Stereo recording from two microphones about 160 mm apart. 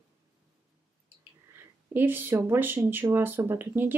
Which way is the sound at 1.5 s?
10° right (ahead or behind).